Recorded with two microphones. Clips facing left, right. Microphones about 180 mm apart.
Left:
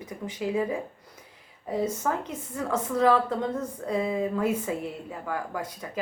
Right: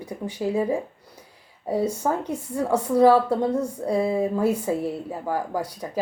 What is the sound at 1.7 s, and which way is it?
A woman's voice, 35° right (ahead or behind).